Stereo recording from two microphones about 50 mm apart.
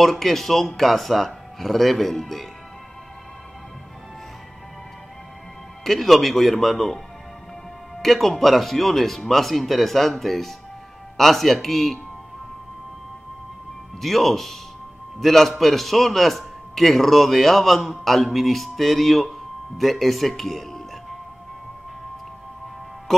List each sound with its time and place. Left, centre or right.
0.0 s a man's voice: centre
5.9 s a man's voice: centre
8.0 s a man's voice: centre
14.0 s a man's voice: centre